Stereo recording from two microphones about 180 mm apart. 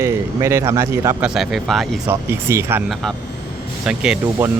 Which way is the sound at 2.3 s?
15° right (ahead or behind).